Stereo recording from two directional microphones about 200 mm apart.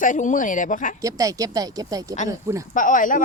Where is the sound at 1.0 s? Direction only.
15° right (ahead or behind).